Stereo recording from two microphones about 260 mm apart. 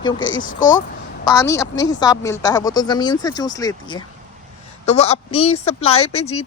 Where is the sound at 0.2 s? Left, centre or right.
Left.